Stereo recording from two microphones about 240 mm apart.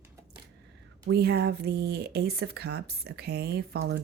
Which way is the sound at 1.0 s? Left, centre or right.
Right.